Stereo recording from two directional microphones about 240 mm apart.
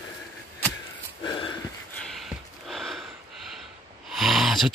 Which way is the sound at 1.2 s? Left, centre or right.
Centre.